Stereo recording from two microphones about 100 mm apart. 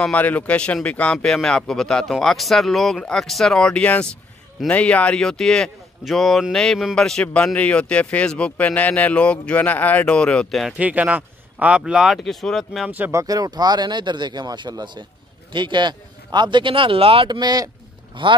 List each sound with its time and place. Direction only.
0.1 s a man's voice: 15° left (ahead or behind)
10.8 s speech: 15° right (ahead or behind); by 12.9 s centre (ahead or behind)
13.1 s speech: 35° right (ahead or behind); by 17.3 s 65° right (ahead or behind)
17.3 s speech: 45° right (ahead or behind)
18.2 s speech: 55° right (ahead or behind)